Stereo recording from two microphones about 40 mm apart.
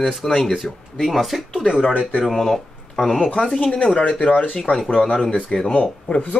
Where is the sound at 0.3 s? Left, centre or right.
Centre.